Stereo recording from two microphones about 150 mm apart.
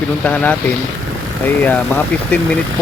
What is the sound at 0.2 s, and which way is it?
Speech, 10° left (ahead or behind).